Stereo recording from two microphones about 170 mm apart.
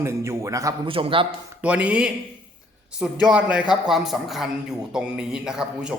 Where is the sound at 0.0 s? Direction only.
15° right (ahead or behind).